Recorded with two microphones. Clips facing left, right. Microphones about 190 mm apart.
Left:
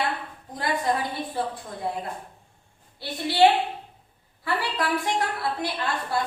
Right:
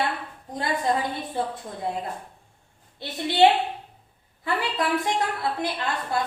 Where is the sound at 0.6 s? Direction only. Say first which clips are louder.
Right 1 dB; 25° right (ahead or behind).